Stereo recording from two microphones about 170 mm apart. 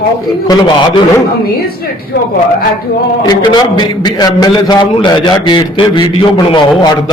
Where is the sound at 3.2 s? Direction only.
25° left (ahead or behind).